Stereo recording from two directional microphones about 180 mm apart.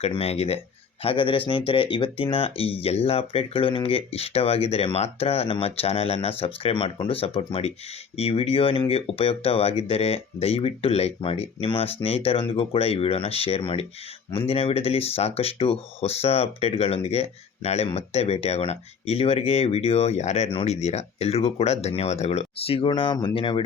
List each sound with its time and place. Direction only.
0.0 s speech: 35° left (ahead or behind)